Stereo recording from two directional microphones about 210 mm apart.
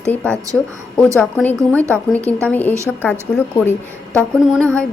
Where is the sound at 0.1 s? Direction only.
5° left (ahead or behind).